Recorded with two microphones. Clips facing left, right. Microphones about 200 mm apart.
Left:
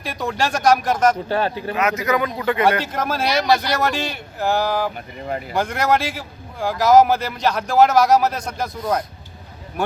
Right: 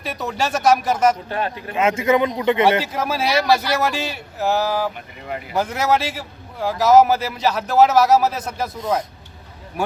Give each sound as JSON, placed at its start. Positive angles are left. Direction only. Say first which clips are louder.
{"t": 0.0, "sound": "speech", "louder": "left 1 dB", "side_deg": -5}
{"t": 1.3, "sound": "speech", "louder": "left 4 dB", "side_deg": 30}
{"t": 1.7, "sound": "a man's voice", "louder": "right 5 dB", "side_deg": -25}
{"t": 2.8, "sound": "speech", "louder": "even", "side_deg": -5}